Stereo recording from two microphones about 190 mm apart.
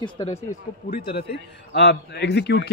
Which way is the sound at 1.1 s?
60° left (ahead or behind).